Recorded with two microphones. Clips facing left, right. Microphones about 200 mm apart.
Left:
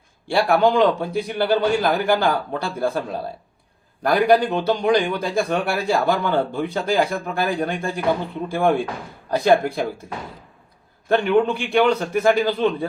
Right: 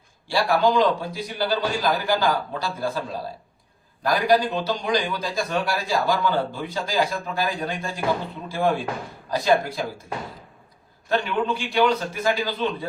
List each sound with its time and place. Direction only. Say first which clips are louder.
0.3 s speech: left 3 dB; 55° left (ahead or behind)
11.1 s speech: left 6 dB; 55° left (ahead or behind)